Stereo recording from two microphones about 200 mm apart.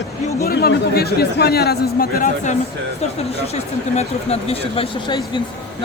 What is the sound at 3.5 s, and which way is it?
Speech, 30° left (ahead or behind).